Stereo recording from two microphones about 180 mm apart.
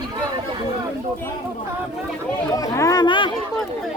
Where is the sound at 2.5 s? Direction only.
20° left (ahead or behind).